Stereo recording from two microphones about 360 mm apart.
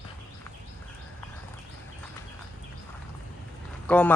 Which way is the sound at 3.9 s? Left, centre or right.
Centre.